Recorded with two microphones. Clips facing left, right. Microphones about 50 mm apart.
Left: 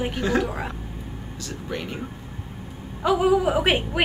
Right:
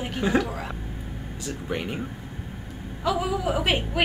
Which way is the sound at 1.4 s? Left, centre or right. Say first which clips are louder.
Right 2 dB; centre.